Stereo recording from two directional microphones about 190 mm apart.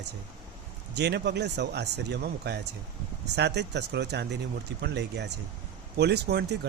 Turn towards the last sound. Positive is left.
turn(degrees=-60)  # may be behind; listen again after turning